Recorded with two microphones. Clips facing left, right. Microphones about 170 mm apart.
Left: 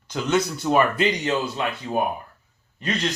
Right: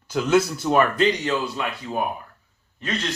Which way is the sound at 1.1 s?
20° left (ahead or behind).